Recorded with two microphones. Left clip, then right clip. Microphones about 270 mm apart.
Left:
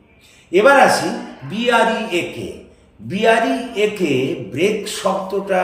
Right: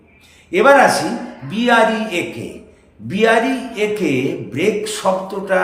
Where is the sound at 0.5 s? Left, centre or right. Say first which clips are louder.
Right 1 dB; centre.